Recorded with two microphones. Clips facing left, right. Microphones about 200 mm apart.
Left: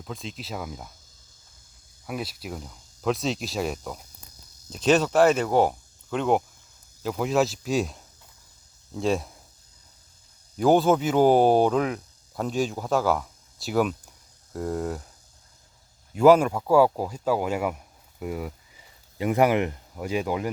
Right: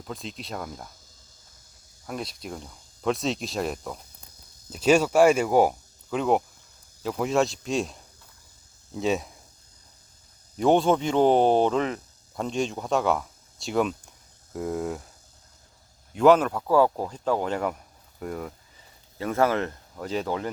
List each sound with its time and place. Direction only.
0.0 s speech: centre (ahead or behind)
2.0 s speech: 5° left (ahead or behind)
10.6 s speech: 5° left (ahead or behind)
16.1 s speech: 10° left (ahead or behind)